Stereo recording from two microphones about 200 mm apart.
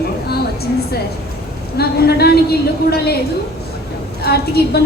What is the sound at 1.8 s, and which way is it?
Speech, 50° left (ahead or behind).